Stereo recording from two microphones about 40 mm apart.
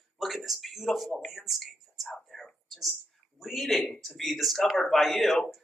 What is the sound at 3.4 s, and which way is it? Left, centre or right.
Speech, centre.